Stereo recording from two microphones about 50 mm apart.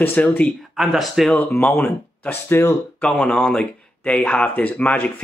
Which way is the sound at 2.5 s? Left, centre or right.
Left.